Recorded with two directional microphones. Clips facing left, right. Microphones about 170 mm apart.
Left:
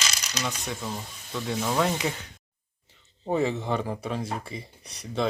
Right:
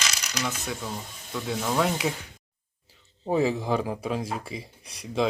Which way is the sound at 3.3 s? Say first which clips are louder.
Right 2 dB; 10° right (ahead or behind).